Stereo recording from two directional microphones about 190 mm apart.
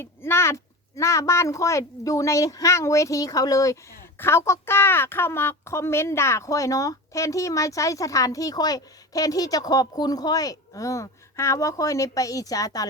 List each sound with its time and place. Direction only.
0.0 s a woman's voice: 10° left (ahead or behind)